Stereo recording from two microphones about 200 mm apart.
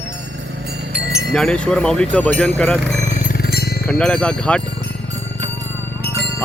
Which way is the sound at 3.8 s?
Centre (ahead or behind).